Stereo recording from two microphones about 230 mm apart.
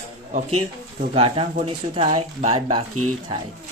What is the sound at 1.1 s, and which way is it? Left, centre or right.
Speech, right.